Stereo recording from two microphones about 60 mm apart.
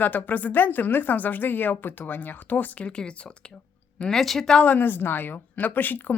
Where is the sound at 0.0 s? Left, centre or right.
Left.